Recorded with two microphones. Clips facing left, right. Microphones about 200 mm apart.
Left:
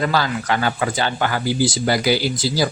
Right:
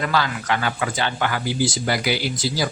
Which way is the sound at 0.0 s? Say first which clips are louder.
Left 3 dB; 35° left (ahead or behind).